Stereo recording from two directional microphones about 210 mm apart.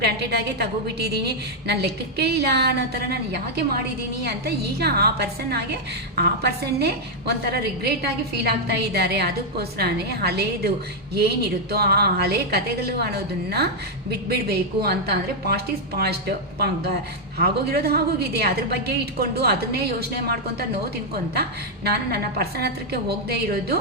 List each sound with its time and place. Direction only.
0.0 s a woman's voice: 50° right (ahead or behind)
21.8 s a woman's voice: 50° right (ahead or behind)